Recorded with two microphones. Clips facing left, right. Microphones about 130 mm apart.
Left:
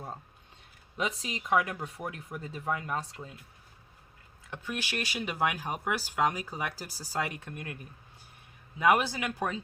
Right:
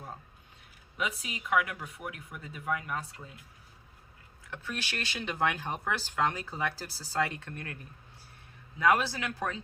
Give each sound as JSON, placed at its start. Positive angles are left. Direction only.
{"t": 0.9, "sound": "speech", "side_deg": 30}
{"t": 4.5, "sound": "speech", "side_deg": 15}
{"t": 8.8, "sound": "speech", "side_deg": 15}